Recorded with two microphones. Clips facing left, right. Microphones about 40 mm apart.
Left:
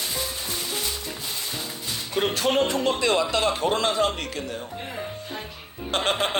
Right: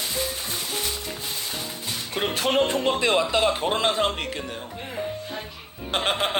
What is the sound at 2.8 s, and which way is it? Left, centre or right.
A man's voice, right.